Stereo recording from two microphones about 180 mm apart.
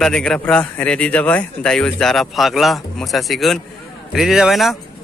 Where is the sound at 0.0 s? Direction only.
5° left (ahead or behind).